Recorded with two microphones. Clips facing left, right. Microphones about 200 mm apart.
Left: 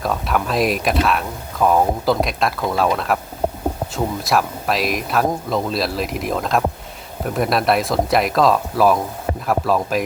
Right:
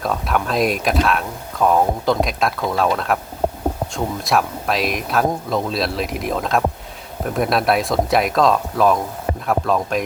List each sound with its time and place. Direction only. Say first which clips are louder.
0.0 s speech: even; centre (ahead or behind)